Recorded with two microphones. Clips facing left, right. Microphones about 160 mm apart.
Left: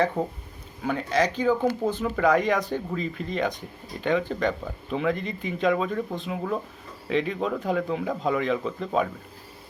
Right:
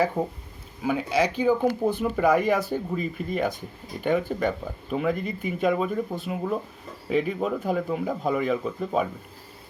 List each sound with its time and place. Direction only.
0.2 s speech: 10° right (ahead or behind)